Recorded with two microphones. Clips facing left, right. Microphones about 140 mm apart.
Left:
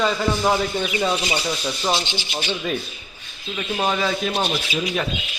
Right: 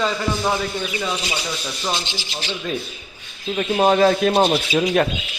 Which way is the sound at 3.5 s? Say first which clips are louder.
Right 7 dB; 40° right (ahead or behind).